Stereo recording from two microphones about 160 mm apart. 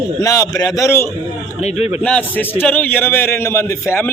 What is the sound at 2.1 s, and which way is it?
A man's voice, 10° left (ahead or behind).